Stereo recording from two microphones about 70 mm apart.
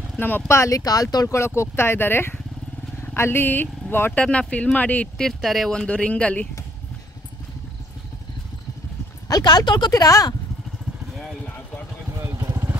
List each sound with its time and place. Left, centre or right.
0.5 s speech: left
0.7 s speech: left
4.2 s speech: centre
5.1 s speech: centre
5.7 s speech: centre
9.3 s speech: left